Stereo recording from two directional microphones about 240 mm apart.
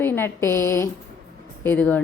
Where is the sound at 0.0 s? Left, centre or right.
Centre.